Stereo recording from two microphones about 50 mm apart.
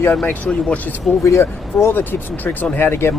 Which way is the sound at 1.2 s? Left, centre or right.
Left.